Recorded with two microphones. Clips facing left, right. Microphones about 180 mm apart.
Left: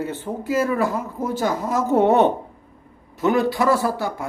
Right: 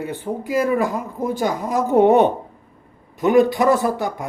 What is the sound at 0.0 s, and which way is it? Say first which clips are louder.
Speech: right 1 dB; 15° right (ahead or behind).